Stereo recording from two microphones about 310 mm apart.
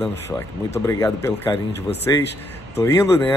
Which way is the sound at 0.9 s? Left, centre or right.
Centre.